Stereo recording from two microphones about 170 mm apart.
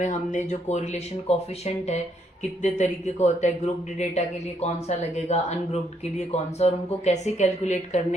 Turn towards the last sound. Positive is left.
turn(degrees=40)  # may be behind; listen again after turning